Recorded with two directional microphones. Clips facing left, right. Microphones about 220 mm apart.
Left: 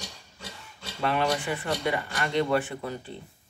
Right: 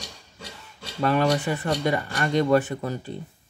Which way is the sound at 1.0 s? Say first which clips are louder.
Right 5 dB; 40° right (ahead or behind).